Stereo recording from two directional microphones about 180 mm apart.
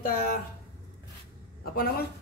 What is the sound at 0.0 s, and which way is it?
Speech, 55° left (ahead or behind).